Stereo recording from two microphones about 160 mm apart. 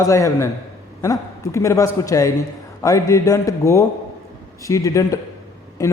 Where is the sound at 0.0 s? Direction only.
20° left (ahead or behind).